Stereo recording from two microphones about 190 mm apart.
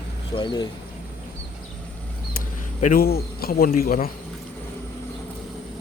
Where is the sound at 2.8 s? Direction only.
45° left (ahead or behind).